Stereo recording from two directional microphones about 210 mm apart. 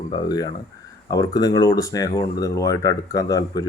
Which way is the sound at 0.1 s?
20° left (ahead or behind).